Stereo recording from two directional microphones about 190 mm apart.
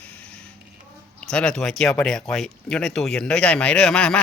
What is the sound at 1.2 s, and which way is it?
Speech, 5° left (ahead or behind).